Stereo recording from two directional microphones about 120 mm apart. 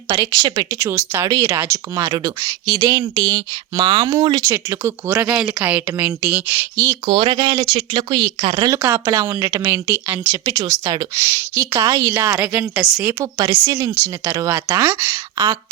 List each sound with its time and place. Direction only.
0.1 s speech: 30° right (ahead or behind); by 5.8 s 10° right (ahead or behind)
5.8 s speech: 20° right (ahead or behind)
7.0 s speech: 45° right (ahead or behind)
8.8 s speech: 25° right (ahead or behind); by 13.1 s 10° right (ahead or behind)
13.1 s speech: 25° right (ahead or behind)